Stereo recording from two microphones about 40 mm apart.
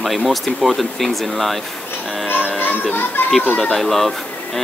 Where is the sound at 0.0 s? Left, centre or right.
Centre.